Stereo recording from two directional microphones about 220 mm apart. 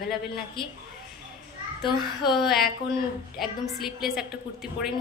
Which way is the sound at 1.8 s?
20° left (ahead or behind).